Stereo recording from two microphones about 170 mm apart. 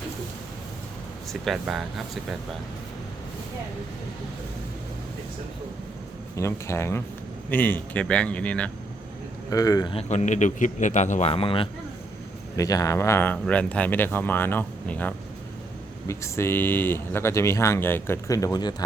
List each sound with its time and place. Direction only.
1.3 s speech: centre (ahead or behind)
6.3 s speech: 15° left (ahead or behind)
9.5 s speech: 20° left (ahead or behind)
9.9 s speech: 40° left (ahead or behind)
12.5 s speech: 20° left (ahead or behind)